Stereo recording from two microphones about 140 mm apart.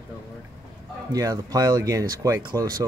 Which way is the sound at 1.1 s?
25° right (ahead or behind).